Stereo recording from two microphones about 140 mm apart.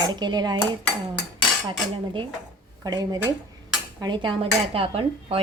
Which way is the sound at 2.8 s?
25° right (ahead or behind).